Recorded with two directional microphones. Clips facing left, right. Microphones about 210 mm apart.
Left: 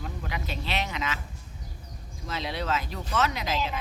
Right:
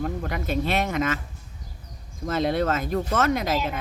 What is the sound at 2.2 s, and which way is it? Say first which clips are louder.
Speech: right 9 dB; 50° right (ahead or behind).